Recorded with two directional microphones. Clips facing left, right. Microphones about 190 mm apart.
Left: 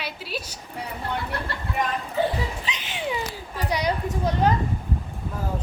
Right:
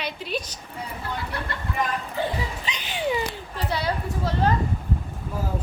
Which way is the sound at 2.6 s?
Centre (ahead or behind).